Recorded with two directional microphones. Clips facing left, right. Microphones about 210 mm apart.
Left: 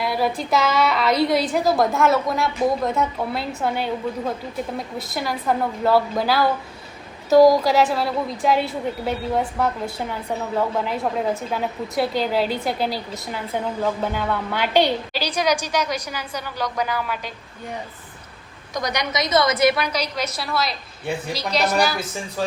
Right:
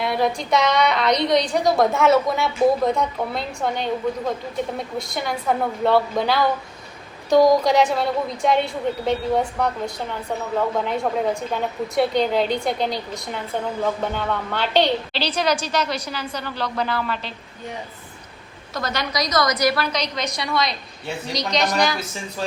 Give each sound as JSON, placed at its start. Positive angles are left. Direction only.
{"t": 0.0, "sound": "a woman's voice", "side_deg": 5}
{"t": 4.9, "sound": "a woman's voice", "side_deg": 5}
{"t": 18.7, "sound": "a woman's voice", "side_deg": 15}
{"t": 19.9, "sound": "a woman's voice", "side_deg": 10}